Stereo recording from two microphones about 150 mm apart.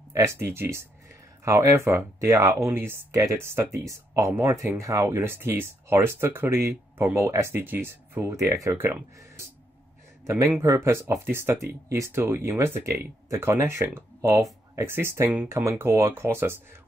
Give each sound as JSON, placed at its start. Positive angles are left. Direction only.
{"t": 0.1, "sound": "speech", "side_deg": -15}
{"t": 10.2, "sound": "speech", "side_deg": -15}